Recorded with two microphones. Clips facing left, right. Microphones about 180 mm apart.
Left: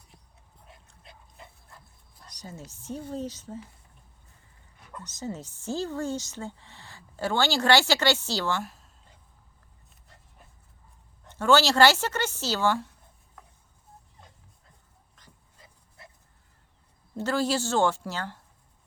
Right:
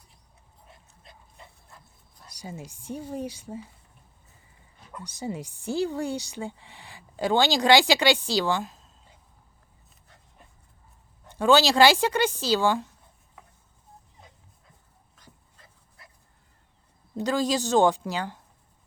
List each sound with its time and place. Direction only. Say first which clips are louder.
0.7 s dog: left 1 dB; centre (ahead or behind)
2.2 s a woman's voice: right 3 dB; 10° right (ahead or behind)
4.9 s speech: right 2 dB; 10° right (ahead or behind)
11.3 s a woman's voice: right 2 dB; 15° right (ahead or behind)
16.0 s dog: left 4 dB; 25° left (ahead or behind)
17.2 s a woman's voice: right 1 dB; 15° right (ahead or behind)